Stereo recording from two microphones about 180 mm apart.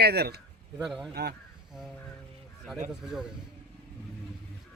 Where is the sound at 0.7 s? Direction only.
Centre (ahead or behind).